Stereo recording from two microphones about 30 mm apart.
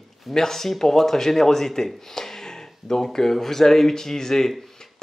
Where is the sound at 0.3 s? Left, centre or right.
Centre.